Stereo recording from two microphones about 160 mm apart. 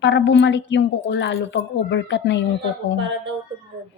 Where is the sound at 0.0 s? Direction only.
90° left.